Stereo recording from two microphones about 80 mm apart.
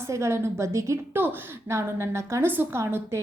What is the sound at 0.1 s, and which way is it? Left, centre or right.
Speech, right.